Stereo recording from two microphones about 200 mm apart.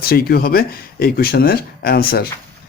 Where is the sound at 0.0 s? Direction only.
50° left (ahead or behind).